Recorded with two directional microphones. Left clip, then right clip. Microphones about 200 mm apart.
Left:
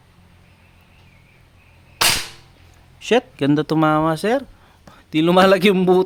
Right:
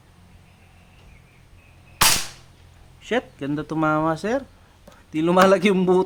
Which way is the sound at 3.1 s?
50° left (ahead or behind).